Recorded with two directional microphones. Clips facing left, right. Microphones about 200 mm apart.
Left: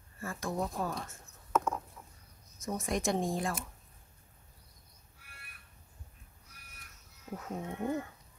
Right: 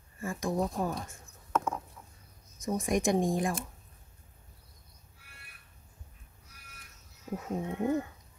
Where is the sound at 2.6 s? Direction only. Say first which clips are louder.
Right 5 dB; 15° right (ahead or behind).